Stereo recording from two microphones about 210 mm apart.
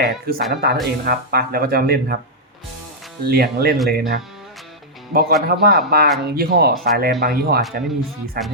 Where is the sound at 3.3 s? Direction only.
45° right (ahead or behind).